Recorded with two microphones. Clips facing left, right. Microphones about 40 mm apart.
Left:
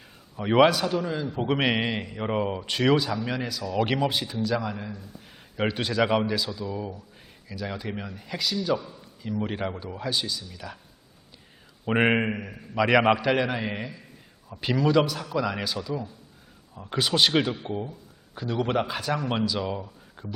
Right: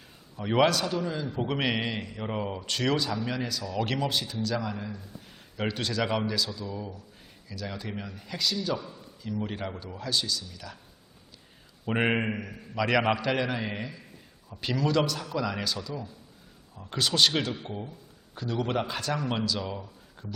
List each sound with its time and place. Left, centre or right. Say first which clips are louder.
0.3 s a man's voice: left 4 dB; centre
9.2 s a man's voice: left 4 dB; centre
11.9 s a man's voice: left 4 dB; centre